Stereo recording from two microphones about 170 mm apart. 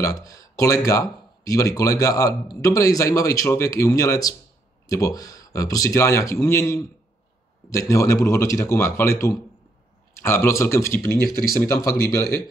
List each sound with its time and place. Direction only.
0.0 s speech: 20° left (ahead or behind)